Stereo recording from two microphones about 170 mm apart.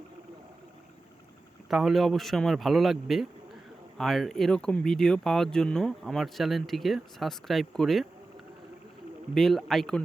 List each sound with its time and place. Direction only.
1.7 s speech: centre (ahead or behind)
9.3 s speech: centre (ahead or behind)